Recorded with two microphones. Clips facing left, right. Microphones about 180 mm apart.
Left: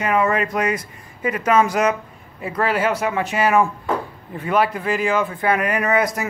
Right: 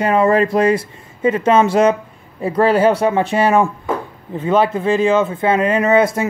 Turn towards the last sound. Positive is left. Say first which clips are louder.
# right 6 dB
turn(degrees=-25)  # may be behind; listen again after turning